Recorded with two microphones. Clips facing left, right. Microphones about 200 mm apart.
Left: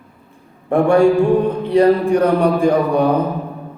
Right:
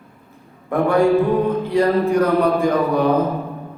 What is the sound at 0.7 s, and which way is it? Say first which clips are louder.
Speech: left 4 dB; 30° left (ahead or behind).